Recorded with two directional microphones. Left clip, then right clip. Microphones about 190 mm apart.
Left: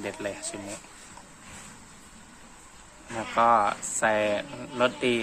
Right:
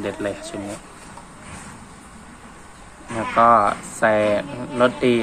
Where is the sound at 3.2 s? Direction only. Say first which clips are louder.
Right 7 dB; 10° left (ahead or behind).